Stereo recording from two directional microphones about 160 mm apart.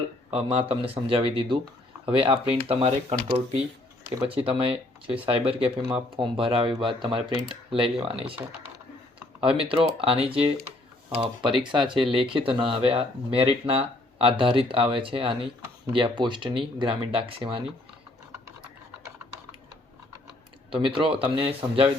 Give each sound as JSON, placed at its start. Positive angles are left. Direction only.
{"t": 0.3, "sound": "speech", "side_deg": -40}
{"t": 4.3, "sound": "speech", "side_deg": -35}
{"t": 9.4, "sound": "speech", "side_deg": -35}
{"t": 11.5, "sound": "speech", "side_deg": -30}
{"t": 20.7, "sound": "speech", "side_deg": -30}